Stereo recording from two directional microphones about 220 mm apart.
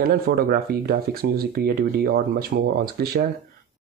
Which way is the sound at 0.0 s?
45° right (ahead or behind).